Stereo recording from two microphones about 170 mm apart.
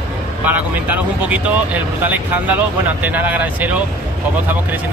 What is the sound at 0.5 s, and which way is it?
Speech, 10° right (ahead or behind).